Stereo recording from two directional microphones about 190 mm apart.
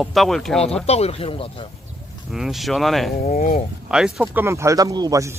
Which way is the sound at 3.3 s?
45° left (ahead or behind).